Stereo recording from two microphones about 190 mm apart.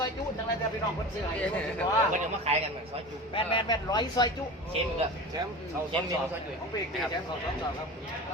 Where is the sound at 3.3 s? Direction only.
25° left (ahead or behind).